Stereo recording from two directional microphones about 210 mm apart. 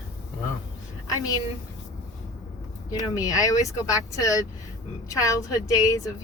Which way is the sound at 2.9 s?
15° left (ahead or behind).